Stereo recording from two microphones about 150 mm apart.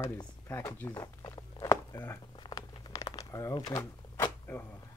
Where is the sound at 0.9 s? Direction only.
25° left (ahead or behind).